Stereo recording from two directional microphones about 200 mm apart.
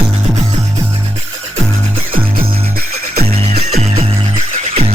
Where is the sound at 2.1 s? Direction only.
45° right (ahead or behind).